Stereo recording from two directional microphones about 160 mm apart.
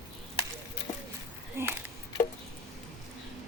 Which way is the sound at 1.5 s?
15° right (ahead or behind).